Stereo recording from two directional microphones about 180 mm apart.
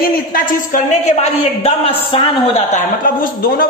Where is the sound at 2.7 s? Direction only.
50° left (ahead or behind).